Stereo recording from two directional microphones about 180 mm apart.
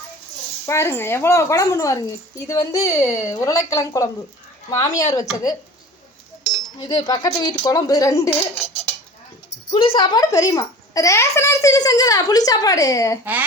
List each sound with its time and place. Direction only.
0.6 s a woman's voice: 15° left (ahead or behind)
6.8 s a child's voice: 20° left (ahead or behind)
9.7 s a child's voice: 30° left (ahead or behind)